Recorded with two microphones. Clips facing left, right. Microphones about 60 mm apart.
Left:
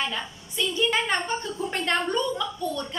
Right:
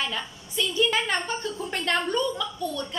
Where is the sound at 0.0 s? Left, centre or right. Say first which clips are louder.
Left 1 dB; left.